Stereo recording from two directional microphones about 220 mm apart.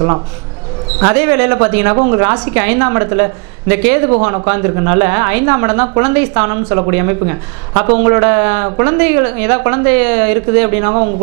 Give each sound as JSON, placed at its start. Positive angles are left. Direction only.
{"t": 1.0, "sound": "a woman's voice", "side_deg": -15}